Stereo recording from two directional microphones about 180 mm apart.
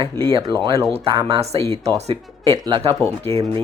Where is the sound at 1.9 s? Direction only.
35° right (ahead or behind).